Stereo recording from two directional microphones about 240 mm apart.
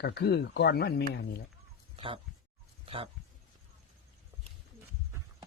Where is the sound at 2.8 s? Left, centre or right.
Right.